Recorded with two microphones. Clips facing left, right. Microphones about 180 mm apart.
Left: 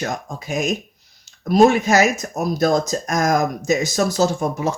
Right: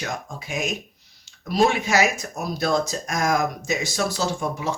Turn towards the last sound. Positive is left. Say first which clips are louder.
# left 4 dB
turn(degrees=40)  # may be behind; listen again after turning